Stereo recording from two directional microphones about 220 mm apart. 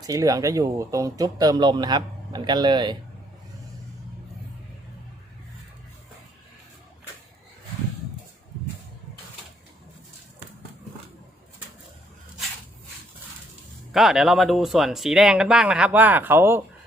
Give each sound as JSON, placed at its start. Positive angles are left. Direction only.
{"t": 0.0, "sound": "speech", "side_deg": -15}
{"t": 13.9, "sound": "speech", "side_deg": 0}